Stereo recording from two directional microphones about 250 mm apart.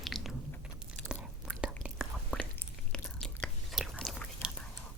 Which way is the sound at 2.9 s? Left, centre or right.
Centre.